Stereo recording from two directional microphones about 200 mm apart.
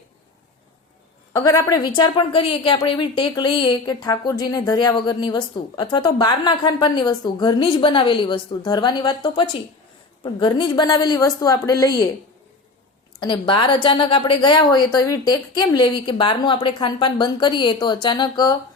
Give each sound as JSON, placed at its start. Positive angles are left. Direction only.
{"t": 1.3, "sound": "a woman's voice", "side_deg": 15}
{"t": 13.1, "sound": "a woman's voice", "side_deg": 25}